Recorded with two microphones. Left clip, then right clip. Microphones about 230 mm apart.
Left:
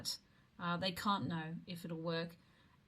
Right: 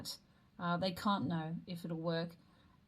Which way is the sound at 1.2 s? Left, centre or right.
Centre.